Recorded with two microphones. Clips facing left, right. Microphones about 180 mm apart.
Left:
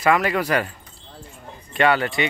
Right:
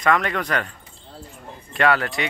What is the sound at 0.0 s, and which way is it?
Speech, 5° left (ahead or behind).